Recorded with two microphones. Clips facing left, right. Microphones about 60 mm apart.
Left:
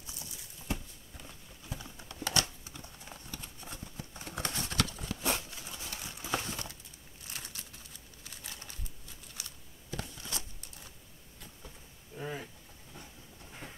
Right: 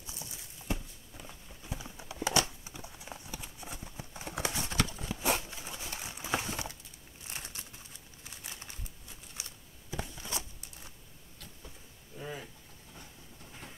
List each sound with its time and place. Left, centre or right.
0.7 s clip-clop: centre
2.2 s typewriter: centre
2.6 s clip-clop: centre
5.9 s crumpling: right
7.2 s a sound: right
12.2 s a sound: centre